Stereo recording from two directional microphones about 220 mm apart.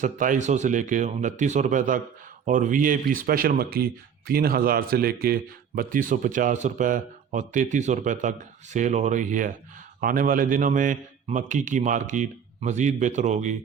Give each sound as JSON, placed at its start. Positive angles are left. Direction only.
{"t": 0.0, "sound": "a man's voice", "side_deg": -35}